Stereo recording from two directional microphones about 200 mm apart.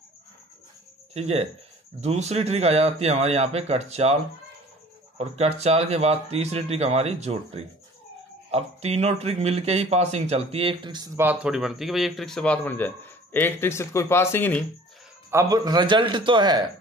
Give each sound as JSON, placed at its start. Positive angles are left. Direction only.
{"t": 1.1, "sound": "speech", "side_deg": -30}
{"t": 11.1, "sound": "a man's voice", "side_deg": -5}
{"t": 15.3, "sound": "a man's voice", "side_deg": -20}